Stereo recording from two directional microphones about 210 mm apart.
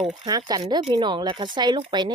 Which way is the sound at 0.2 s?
20° right (ahead or behind).